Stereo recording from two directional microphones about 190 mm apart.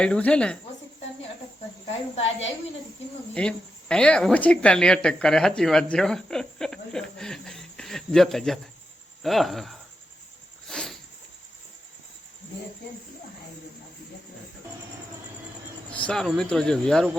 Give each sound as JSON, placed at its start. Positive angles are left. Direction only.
{"t": 0.0, "sound": "speech", "side_deg": 5}
{"t": 2.1, "sound": "speech", "side_deg": 30}
{"t": 3.3, "sound": "speech", "side_deg": 5}
{"t": 10.7, "sound": "a sound", "side_deg": 0}
{"t": 15.9, "sound": "speech", "side_deg": 5}